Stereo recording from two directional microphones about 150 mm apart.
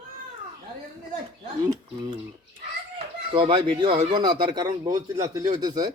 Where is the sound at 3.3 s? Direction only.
35° right (ahead or behind).